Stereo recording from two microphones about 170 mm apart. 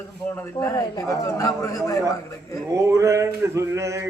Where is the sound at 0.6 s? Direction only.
20° left (ahead or behind).